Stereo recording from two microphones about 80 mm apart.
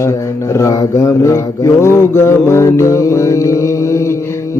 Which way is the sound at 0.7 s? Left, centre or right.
Left.